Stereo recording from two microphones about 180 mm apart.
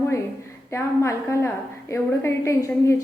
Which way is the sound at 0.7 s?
15° left (ahead or behind).